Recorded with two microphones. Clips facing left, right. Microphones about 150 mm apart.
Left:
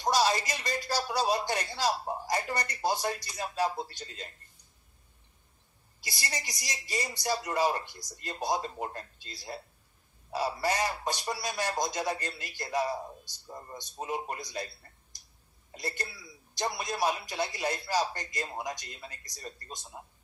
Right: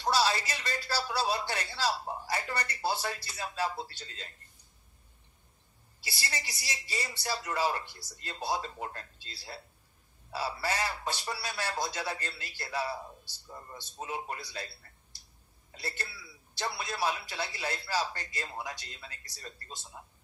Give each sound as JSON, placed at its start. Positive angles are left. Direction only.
{"t": 0.0, "sound": "a man's voice", "side_deg": 15}
{"t": 6.0, "sound": "a man's voice", "side_deg": 15}
{"t": 10.6, "sound": "a man's voice", "side_deg": 15}
{"t": 15.8, "sound": "a man's voice", "side_deg": 15}